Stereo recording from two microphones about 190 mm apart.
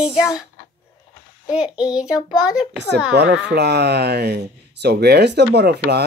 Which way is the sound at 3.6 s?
60° right (ahead or behind).